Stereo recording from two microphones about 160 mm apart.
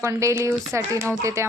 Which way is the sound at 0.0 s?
20° right (ahead or behind).